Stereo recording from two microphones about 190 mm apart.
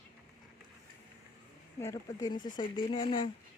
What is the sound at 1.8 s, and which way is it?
Speech, 15° left (ahead or behind).